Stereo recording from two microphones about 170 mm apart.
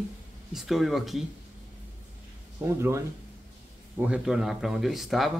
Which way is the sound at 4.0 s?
5° right (ahead or behind).